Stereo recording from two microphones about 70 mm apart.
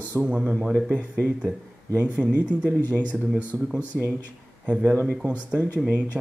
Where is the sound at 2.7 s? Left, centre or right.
Left.